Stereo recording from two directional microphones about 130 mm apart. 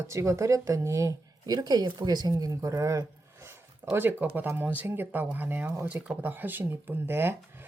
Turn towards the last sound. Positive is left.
turn(degrees=-15)  # may be behind; listen again after turning